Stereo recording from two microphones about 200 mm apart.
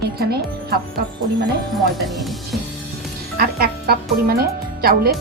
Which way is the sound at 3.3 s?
50° right (ahead or behind).